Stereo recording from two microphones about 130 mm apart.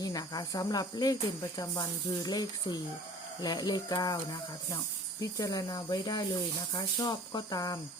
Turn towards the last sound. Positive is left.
turn(degrees=30)  # may be behind; listen again after turning